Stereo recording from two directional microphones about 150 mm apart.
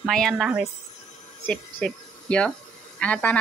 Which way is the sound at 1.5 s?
5° left (ahead or behind).